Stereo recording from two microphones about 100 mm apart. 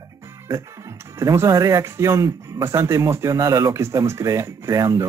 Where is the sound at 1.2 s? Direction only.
30° right (ahead or behind).